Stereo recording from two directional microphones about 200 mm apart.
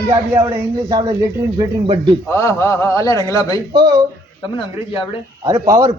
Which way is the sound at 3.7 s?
20° right (ahead or behind).